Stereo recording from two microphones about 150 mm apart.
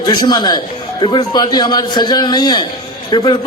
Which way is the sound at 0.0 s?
30° left (ahead or behind).